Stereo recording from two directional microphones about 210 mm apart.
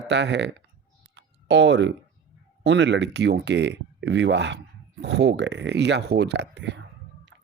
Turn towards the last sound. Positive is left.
turn(degrees=-55)  # may be behind; listen again after turning